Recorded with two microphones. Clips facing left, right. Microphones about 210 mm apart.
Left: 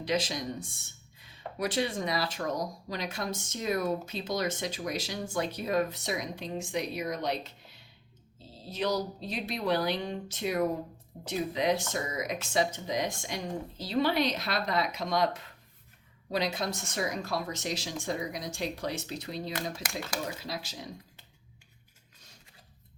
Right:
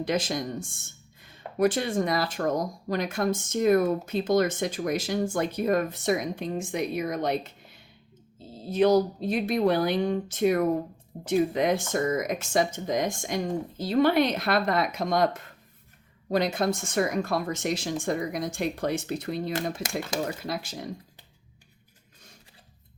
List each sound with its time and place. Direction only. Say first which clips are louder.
0.0 s speech: right 3 dB; 50° right (ahead or behind)